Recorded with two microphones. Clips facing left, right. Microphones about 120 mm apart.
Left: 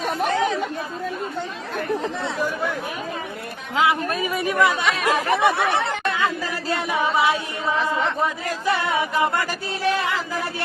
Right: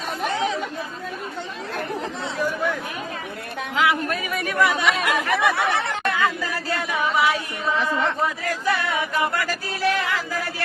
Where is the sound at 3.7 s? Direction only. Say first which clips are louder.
Left 1 dB; 20° left (ahead or behind).